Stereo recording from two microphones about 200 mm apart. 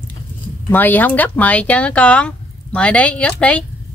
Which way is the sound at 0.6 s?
10° left (ahead or behind).